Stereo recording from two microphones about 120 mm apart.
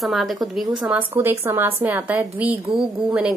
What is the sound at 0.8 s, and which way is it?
A woman's voice, 15° right (ahead or behind).